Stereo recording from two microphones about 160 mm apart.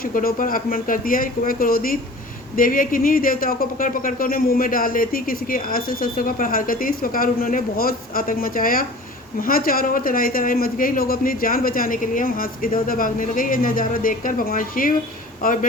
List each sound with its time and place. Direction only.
0.0 s speech: 65° left (ahead or behind)